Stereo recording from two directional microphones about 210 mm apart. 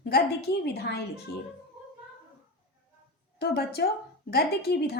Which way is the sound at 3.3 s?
50° left (ahead or behind).